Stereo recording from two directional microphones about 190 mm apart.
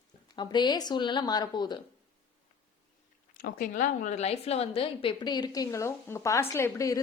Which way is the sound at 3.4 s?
50° left (ahead or behind).